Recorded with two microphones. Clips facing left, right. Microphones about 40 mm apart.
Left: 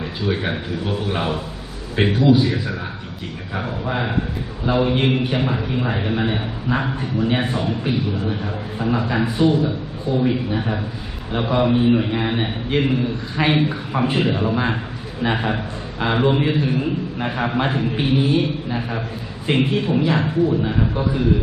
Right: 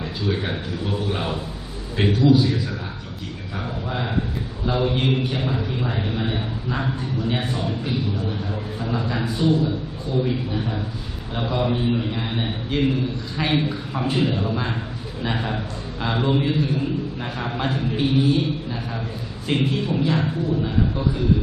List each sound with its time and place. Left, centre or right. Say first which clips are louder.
0.0 s a man's voice: left 2 dB; centre